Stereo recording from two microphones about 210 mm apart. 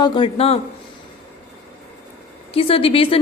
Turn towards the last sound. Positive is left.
turn(degrees=25)  # may be behind; listen again after turning